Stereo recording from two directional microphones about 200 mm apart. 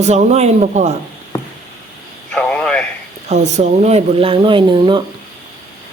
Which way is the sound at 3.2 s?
35° right (ahead or behind).